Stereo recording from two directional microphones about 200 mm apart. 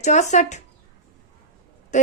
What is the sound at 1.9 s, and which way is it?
Speech, 35° left (ahead or behind).